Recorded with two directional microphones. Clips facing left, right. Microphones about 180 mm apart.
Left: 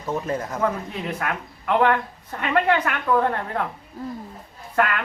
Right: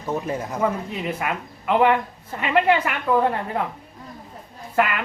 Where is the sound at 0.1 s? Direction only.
15° right (ahead or behind).